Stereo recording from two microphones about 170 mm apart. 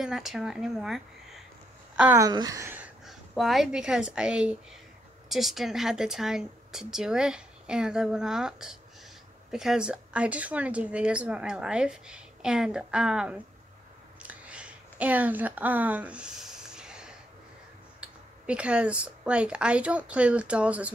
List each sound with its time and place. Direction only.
0.0 s speech: centre (ahead or behind)
2.2 s speech: 20° right (ahead or behind)
3.1 s speech: centre (ahead or behind)
14.2 s a sound: 5° right (ahead or behind)
18.0 s speech: 5° right (ahead or behind)